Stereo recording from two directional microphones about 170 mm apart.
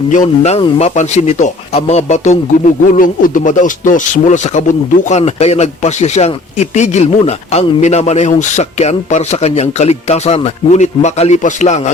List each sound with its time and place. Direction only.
0.1 s speech: 45° left (ahead or behind)